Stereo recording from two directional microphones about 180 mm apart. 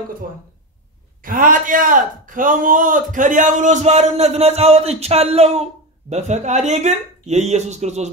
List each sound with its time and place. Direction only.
1.2 s a man's voice: 50° right (ahead or behind)